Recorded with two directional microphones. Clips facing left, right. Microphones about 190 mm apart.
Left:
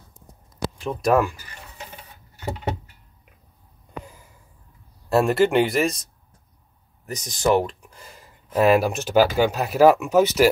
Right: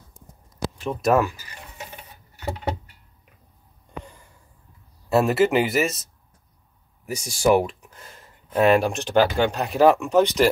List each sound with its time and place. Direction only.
0.8 s speech: centre (ahead or behind)
4.0 s a sound: 5° left (ahead or behind)
5.1 s speech: centre (ahead or behind)
7.1 s speech: 10° right (ahead or behind); by 10.5 s 5° left (ahead or behind)